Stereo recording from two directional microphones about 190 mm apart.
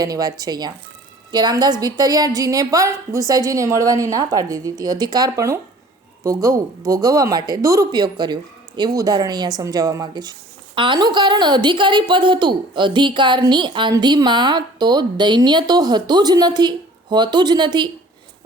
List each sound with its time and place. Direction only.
0.0 s a woman's voice: 20° right (ahead or behind)